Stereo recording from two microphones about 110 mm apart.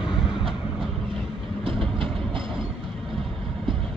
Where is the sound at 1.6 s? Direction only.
50° right (ahead or behind).